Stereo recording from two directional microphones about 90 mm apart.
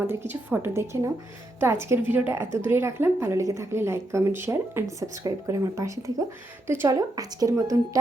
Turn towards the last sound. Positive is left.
turn(degrees=-40)  # may be behind; listen again after turning